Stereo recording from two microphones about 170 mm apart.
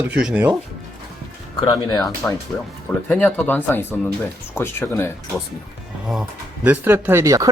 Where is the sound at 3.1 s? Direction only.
10° left (ahead or behind).